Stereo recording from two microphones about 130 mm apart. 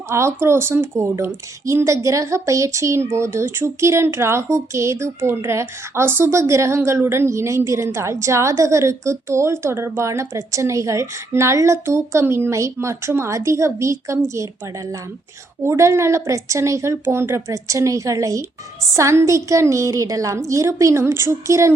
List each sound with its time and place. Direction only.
0.1 s speech: 20° right (ahead or behind)
15.6 s speech: 20° right (ahead or behind)